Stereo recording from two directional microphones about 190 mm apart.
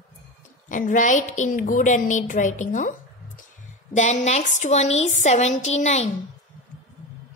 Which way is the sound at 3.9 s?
40° left (ahead or behind).